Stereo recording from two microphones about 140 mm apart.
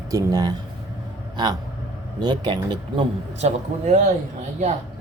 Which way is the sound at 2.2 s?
30° right (ahead or behind).